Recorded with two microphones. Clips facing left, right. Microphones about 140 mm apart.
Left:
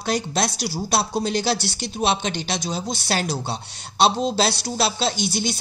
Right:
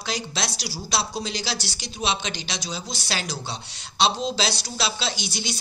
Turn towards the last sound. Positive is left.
turn(degrees=50)  # may be behind; listen again after turning